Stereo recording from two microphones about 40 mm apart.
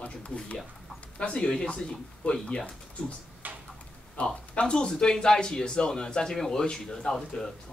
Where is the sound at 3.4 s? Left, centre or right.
Right.